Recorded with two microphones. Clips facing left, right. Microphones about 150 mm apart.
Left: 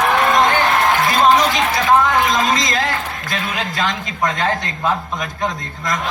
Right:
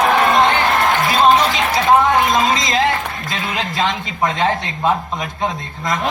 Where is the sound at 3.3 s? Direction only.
25° right (ahead or behind).